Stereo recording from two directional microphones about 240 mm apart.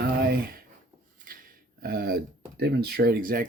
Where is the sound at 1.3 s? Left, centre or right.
Right.